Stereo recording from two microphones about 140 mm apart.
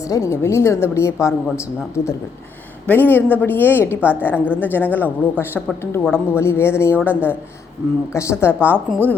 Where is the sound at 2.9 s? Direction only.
15° left (ahead or behind).